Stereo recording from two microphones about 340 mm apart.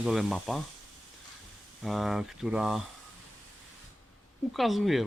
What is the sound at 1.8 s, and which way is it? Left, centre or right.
Speech, centre.